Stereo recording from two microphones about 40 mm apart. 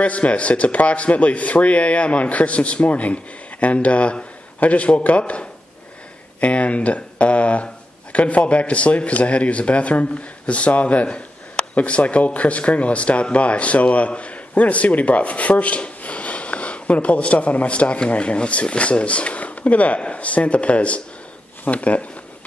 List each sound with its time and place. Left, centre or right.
0.0 s speech: left